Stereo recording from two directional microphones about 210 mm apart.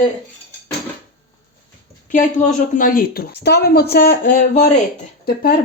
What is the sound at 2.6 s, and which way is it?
Speech, 40° left (ahead or behind).